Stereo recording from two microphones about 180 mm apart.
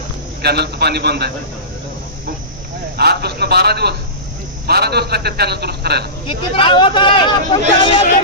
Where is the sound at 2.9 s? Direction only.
60° right (ahead or behind).